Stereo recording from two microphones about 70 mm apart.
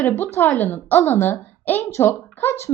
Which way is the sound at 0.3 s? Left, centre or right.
Left.